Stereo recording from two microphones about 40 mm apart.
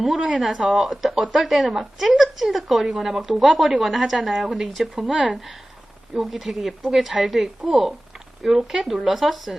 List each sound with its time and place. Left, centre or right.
0.3 s a woman's voice: centre
5.1 s speech: right
6.1 s a woman's voice: centre